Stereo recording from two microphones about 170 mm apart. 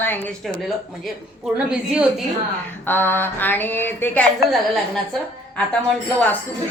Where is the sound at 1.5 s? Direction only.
5° right (ahead or behind).